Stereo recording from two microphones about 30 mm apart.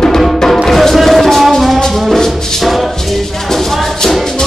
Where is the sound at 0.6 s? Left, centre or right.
Centre.